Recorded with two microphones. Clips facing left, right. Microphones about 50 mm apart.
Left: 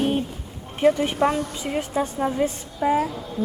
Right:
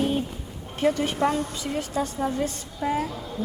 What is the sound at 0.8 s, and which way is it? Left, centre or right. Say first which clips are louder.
A woman's voice: left 4 dB; centre.